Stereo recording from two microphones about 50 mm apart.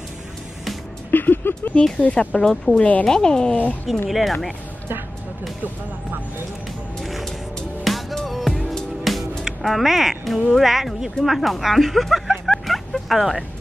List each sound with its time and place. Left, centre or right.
1.1 s vehicle: left
2.0 s speech: left
2.5 s speech: centre
2.8 s speech: left
4.1 s speech: centre
7.0 s music: centre
9.4 s speech: centre